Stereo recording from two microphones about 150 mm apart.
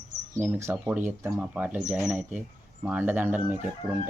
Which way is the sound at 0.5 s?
20° right (ahead or behind).